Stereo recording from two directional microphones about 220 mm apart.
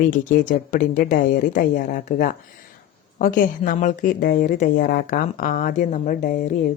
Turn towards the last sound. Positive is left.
turn(degrees=35)  # may be behind; listen again after turning